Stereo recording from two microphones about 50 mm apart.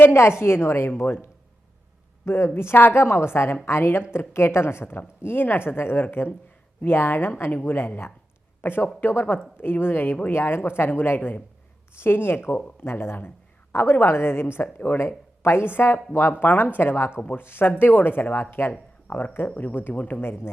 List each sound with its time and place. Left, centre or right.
0.1 s a woman's voice: left
0.9 s a woman's voice: left
17.2 s a woman's voice: left
18.7 s a sound: left
19.5 s speech: left
20.2 s a woman's voice: left